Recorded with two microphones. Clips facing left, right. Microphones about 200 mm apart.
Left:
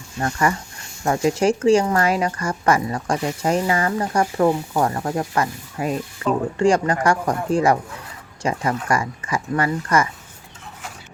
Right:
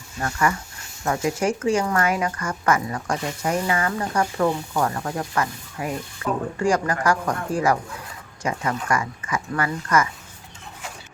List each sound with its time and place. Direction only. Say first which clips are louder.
0.2 s speech: left 2 dB; 30° left (ahead or behind)
4.4 s speech: left 4 dB; 5° left (ahead or behind)
4.8 s speech: left 3 dB; 30° left (ahead or behind)